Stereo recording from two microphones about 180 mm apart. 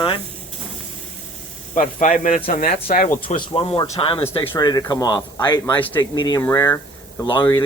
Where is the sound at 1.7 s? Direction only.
45° left (ahead or behind).